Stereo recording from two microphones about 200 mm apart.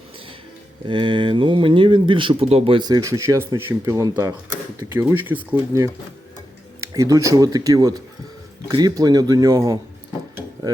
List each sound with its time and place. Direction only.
0.9 s a man's voice: 25° right (ahead or behind)
6.9 s a man's voice: 15° right (ahead or behind)